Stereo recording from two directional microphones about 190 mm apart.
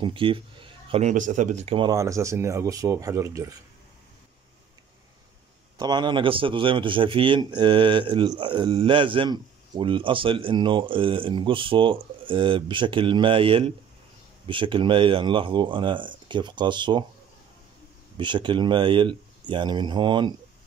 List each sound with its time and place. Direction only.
0.0 s speech: 25° right (ahead or behind)
1.8 s speech: 20° right (ahead or behind)
5.8 s a man's voice: 20° right (ahead or behind)
18.1 s a man's voice: 25° right (ahead or behind)